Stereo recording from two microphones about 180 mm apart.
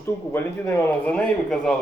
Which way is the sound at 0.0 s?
15° left (ahead or behind).